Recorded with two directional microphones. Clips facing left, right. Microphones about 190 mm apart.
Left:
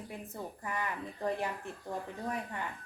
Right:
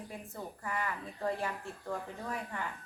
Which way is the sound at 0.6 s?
20° left (ahead or behind).